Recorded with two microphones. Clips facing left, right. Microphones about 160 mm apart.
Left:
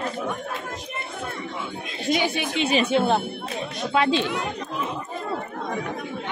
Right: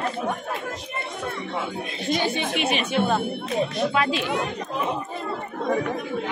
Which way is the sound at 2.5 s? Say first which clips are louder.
Left 5 dB; 25° left (ahead or behind).